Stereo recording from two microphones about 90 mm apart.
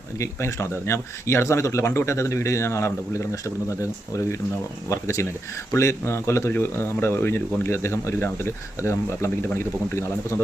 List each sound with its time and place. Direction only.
0.2 s speech: 30° left (ahead or behind)
4.9 s speech: 35° left (ahead or behind)